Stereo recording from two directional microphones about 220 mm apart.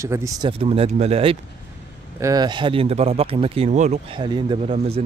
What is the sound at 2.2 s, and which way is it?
Speech, 15° right (ahead or behind).